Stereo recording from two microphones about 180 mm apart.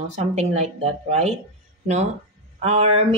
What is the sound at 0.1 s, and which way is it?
Speech, 35° right (ahead or behind).